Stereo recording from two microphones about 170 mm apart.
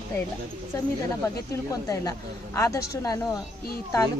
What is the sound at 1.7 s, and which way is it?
A woman's voice, 20° left (ahead or behind).